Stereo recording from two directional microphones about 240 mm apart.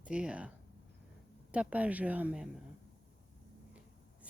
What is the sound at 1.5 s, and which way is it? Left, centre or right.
Speech, centre.